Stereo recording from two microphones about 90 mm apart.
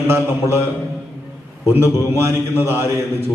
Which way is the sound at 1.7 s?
30° right (ahead or behind).